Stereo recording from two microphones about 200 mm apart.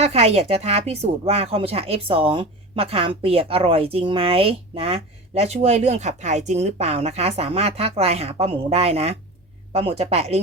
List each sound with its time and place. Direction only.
0.0 s speech: 30° right (ahead or behind)